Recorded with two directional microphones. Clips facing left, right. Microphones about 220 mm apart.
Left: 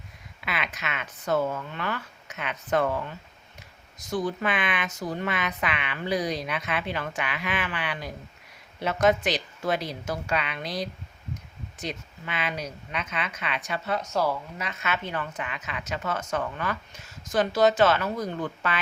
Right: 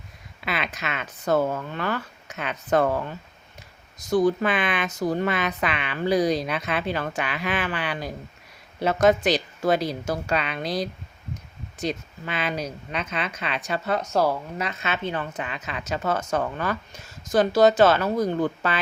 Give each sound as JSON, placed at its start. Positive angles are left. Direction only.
{"t": 0.4, "sound": "speech", "side_deg": -35}
{"t": 14.8, "sound": "a woman's voice", "side_deg": -25}